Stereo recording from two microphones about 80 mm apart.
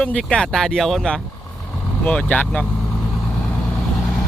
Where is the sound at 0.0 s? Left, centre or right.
Centre.